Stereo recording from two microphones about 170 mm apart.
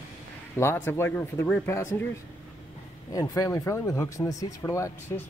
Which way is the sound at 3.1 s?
20° left (ahead or behind).